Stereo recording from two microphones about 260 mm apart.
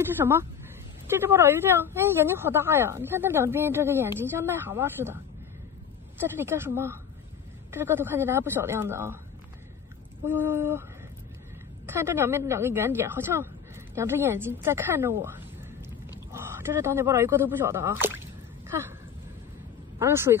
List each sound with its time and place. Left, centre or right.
0.2 s a woman's voice: centre
10.2 s a woman's voice: centre
20.0 s a woman's voice: centre